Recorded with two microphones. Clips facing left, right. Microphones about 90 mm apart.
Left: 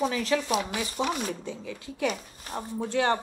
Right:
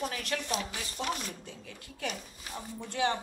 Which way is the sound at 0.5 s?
80° left.